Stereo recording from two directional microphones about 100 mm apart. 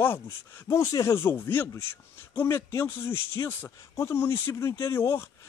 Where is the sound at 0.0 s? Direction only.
20° left (ahead or behind).